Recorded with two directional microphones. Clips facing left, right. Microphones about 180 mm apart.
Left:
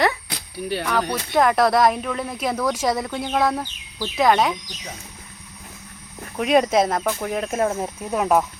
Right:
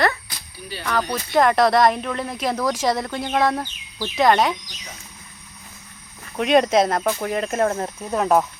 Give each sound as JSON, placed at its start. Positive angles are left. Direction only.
{"t": 0.3, "sound": "a sound", "side_deg": 65}
{"t": 1.1, "sound": "speech", "side_deg": 0}
{"t": 6.3, "sound": "speech", "side_deg": 0}